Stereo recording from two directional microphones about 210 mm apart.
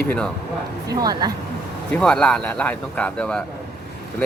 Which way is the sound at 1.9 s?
5° left (ahead or behind).